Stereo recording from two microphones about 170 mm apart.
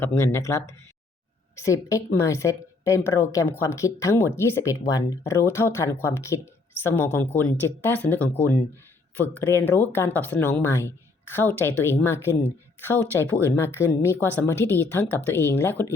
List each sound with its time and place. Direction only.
0.0 s speech: 15° left (ahead or behind)